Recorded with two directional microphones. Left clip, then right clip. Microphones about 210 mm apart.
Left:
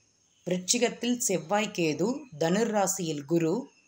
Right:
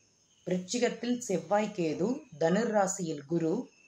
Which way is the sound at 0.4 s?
35° left (ahead or behind).